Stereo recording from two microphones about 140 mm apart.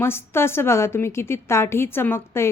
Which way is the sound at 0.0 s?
15° left (ahead or behind).